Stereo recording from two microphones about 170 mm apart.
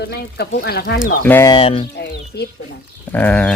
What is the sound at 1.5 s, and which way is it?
Speech, 30° left (ahead or behind).